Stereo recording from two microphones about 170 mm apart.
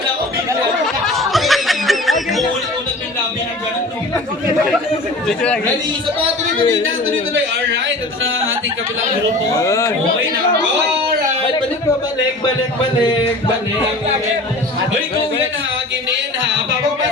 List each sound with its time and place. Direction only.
1.0 s snicker: centre (ahead or behind)
9.6 s a man's voice: 15° left (ahead or behind)